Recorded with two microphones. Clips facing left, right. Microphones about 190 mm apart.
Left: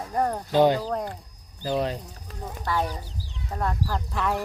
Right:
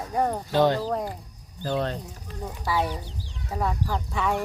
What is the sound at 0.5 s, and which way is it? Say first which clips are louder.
Speech: left 2 dB; 15° left (ahead or behind).